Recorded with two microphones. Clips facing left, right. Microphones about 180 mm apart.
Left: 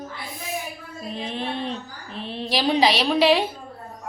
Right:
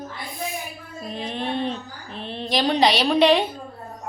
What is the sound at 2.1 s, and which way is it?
A woman's voice, centre (ahead or behind).